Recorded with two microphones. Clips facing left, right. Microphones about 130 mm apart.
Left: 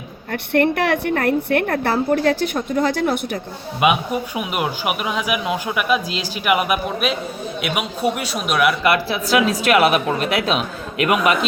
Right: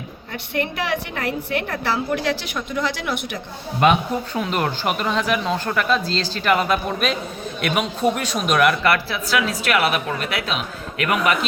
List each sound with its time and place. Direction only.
0.5 s a woman's voice: 55° left (ahead or behind)
3.8 s a man's voice: 10° left (ahead or behind)
8.8 s speech: 15° left (ahead or behind)